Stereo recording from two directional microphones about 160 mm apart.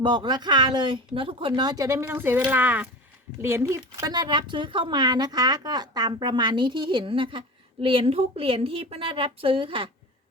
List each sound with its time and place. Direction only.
0.0 s speech: 25° right (ahead or behind)